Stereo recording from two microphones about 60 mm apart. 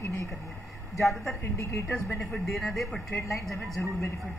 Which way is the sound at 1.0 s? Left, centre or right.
Centre.